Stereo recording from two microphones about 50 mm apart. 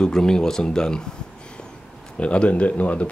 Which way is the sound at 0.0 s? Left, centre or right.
Centre.